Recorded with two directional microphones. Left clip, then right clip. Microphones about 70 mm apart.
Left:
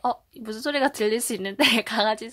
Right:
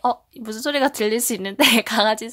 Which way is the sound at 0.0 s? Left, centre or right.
Right.